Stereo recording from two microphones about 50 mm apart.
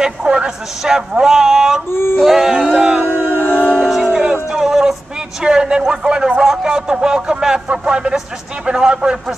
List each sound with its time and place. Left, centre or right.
0.0 s a man's voice: centre
1.9 s yodeling: left
2.1 s a sound: centre
2.5 s music: centre
3.1 s howl: right
3.3 s howl: left
3.8 s music: centre
5.4 s a man's voice: centre